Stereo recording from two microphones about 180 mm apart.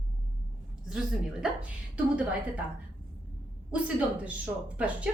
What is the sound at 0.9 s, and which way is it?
Speech, 5° right (ahead or behind).